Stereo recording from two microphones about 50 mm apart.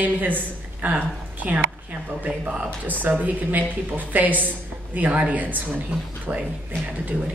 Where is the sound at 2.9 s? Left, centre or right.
Right.